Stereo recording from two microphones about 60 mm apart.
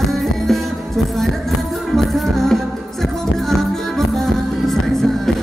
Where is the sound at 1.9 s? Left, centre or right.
Centre.